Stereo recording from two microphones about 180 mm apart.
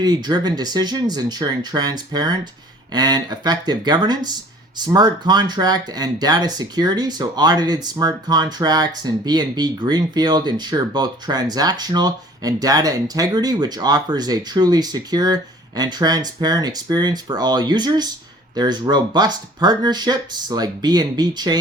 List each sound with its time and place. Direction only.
0.0 s speech: 25° right (ahead or behind)